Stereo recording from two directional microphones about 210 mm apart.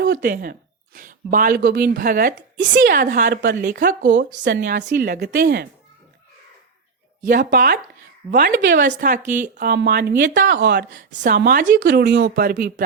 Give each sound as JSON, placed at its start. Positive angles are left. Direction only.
{"t": 0.0, "sound": "a woman's voice", "side_deg": -45}
{"t": 3.4, "sound": "a woman's voice", "side_deg": -50}
{"t": 4.0, "sound": "a woman's voice", "side_deg": -60}
{"t": 7.3, "sound": "a woman's voice", "side_deg": -45}